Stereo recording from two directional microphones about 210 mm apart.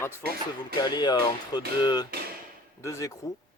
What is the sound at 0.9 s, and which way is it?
Speech, 20° left (ahead or behind).